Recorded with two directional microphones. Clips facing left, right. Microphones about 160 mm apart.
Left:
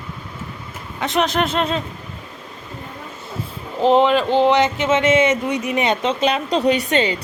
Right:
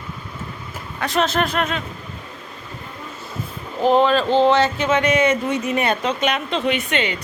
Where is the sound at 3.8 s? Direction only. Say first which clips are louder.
Left 1 dB; 20° left (ahead or behind).